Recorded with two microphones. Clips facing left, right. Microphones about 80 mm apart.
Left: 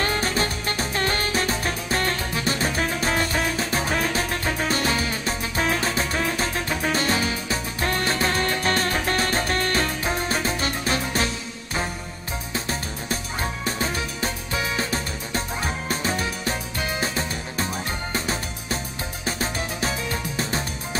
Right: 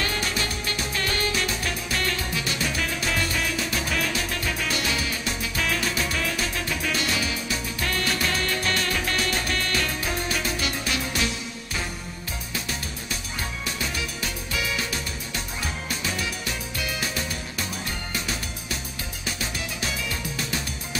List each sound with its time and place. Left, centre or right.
0.0 s music: left
12.5 s music: left